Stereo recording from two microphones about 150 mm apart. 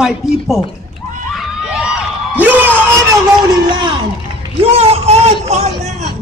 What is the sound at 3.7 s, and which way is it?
Speech, 30° right (ahead or behind).